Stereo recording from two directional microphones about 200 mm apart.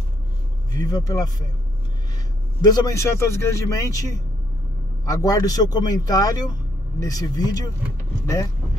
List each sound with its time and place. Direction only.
0.7 s a man's voice: 20° left (ahead or behind)
2.7 s a man's voice: 15° left (ahead or behind)